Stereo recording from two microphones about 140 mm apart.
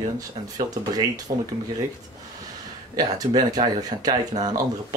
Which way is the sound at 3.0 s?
30° right (ahead or behind).